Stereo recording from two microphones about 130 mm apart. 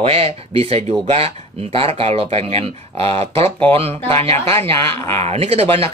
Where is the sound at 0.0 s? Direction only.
50° right (ahead or behind).